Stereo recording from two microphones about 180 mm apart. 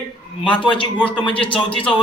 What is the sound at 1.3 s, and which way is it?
Speech, 30° left (ahead or behind).